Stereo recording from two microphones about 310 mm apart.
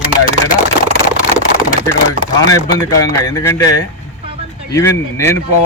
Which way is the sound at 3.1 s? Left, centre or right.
Centre.